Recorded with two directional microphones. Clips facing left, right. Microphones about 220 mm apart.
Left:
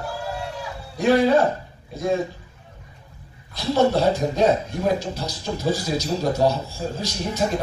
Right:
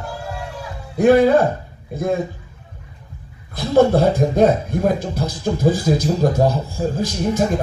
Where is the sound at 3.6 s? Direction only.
50° right (ahead or behind).